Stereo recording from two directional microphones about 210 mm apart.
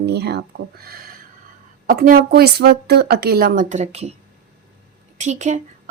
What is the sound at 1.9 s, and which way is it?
A woman's voice, 40° right (ahead or behind).